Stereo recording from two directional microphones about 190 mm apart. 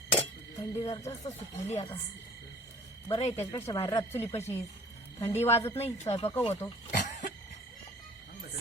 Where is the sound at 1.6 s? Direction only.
35° left (ahead or behind).